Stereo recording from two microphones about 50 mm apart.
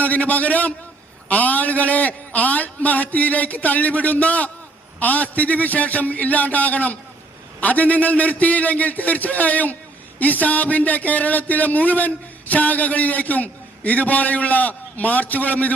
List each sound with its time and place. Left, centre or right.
0.0 s a man's voice: left